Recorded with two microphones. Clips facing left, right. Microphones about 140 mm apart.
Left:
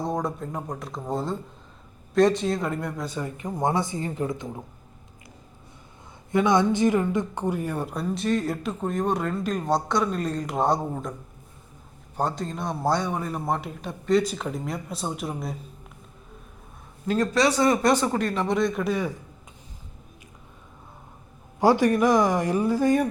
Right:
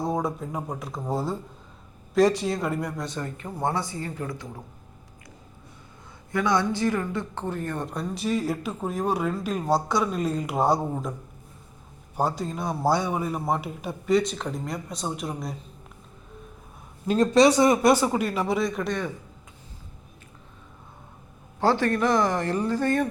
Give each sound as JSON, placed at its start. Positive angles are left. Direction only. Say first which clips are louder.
{"t": 0.0, "sound": "a woman's voice", "louder": "right 1 dB", "side_deg": -5}
{"t": 6.3, "sound": "a woman's voice", "louder": "left 3 dB", "side_deg": 20}
{"t": 12.1, "sound": "a woman's voice", "louder": "right 1 dB", "side_deg": -5}
{"t": 17.1, "sound": "speech", "louder": "right 4 dB", "side_deg": -20}
{"t": 21.6, "sound": "speech", "louder": "left 3 dB", "side_deg": 15}